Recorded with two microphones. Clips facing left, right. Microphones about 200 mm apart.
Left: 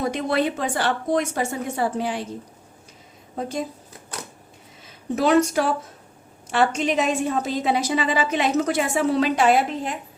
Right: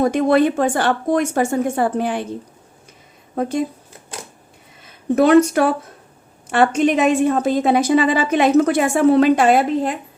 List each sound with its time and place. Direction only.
0.0 s speech: 50° right (ahead or behind)
3.3 s a woman's voice: 55° right (ahead or behind)
5.1 s a woman's voice: 55° right (ahead or behind)